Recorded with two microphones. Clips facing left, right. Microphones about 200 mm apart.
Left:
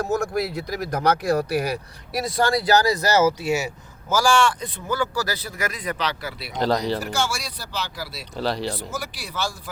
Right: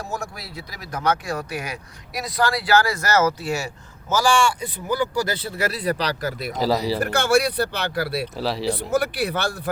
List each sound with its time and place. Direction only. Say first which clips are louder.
0.0 s speech: left 9 dB; 50° left (ahead or behind)
3.4 s speech: left 3 dB; 20° left (ahead or behind)
4.6 s speech: right 2 dB; 20° right (ahead or behind); by 6.5 s 40° right (ahead or behind)
6.5 s speech: even; 5° right (ahead or behind)
7.0 s speech: right 8 dB; 60° right (ahead or behind)
8.4 s speech: left 1 dB; centre (ahead or behind)
8.9 s speech: right 11 dB; 60° right (ahead or behind)